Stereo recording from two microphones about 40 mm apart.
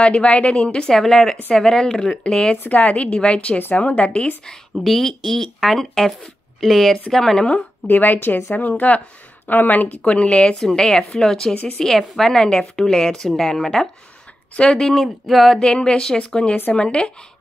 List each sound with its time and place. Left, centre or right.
0.0 s a woman's voice: left
0.8 s a woman's voice: centre
2.7 s a woman's voice: left
3.5 s speech: left
3.8 s a woman's voice: left
4.8 s speech: centre
7.9 s speech: left
10.0 s a woman's voice: left
10.7 s a woman's voice: centre
14.5 s speech: left
14.8 s a woman's voice: centre
15.6 s a woman's voice: left